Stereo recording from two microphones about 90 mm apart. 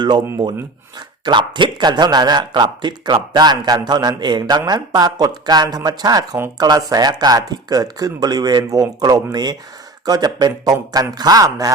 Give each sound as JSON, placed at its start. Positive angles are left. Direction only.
{"t": 0.9, "sound": "speech", "side_deg": -55}